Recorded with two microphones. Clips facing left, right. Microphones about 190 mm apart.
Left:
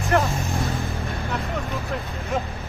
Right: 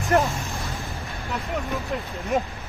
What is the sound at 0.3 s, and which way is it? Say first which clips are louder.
Vehicle: left 5 dB; centre (ahead or behind).